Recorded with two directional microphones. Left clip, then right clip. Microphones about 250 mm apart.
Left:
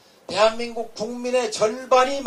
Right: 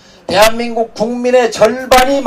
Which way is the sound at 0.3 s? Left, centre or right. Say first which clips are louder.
Right 10 dB; right.